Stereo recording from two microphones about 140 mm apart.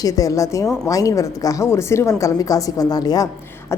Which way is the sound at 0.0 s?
25° left (ahead or behind).